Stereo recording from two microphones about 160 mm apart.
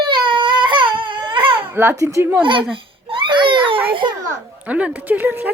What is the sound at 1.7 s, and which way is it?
Speech, 15° right (ahead or behind).